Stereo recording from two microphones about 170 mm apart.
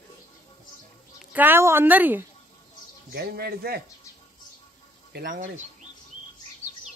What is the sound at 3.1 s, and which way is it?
Speech, 70° right (ahead or behind).